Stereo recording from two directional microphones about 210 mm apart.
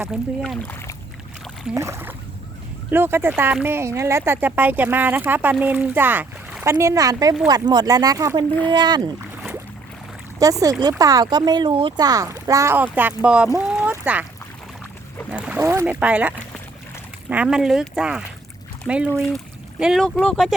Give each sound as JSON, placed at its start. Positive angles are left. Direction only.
{"t": 0.1, "sound": "speech", "side_deg": 0}
{"t": 1.7, "sound": "speech", "side_deg": -10}
{"t": 10.4, "sound": "speech", "side_deg": -15}
{"t": 13.7, "sound": "a sound", "side_deg": -5}
{"t": 15.3, "sound": "speech", "side_deg": -5}